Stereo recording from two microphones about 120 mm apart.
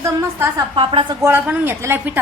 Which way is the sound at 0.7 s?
45° right (ahead or behind).